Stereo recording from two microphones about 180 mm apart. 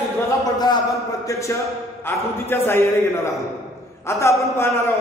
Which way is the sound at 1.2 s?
15° left (ahead or behind).